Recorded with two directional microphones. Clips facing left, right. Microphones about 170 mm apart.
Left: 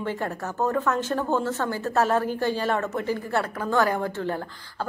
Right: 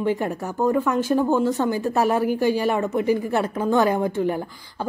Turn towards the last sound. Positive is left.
turn(degrees=-15)  # may be behind; listen again after turning